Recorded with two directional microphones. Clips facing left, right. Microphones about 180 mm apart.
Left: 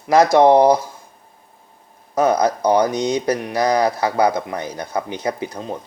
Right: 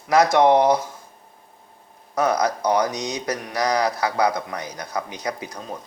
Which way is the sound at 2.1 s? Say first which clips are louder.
Left 4 dB; 30° left (ahead or behind).